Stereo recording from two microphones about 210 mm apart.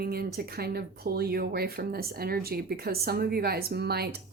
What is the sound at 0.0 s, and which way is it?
Speech, 45° right (ahead or behind).